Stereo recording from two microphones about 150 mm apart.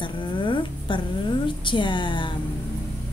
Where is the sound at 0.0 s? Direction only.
35° left (ahead or behind).